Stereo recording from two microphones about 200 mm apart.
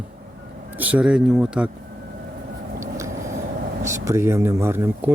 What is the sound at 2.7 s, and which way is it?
Vehicle, 15° right (ahead or behind).